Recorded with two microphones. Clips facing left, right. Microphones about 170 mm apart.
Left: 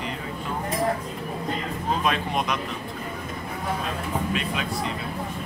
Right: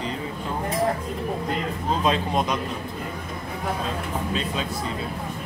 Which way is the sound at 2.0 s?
25° right (ahead or behind).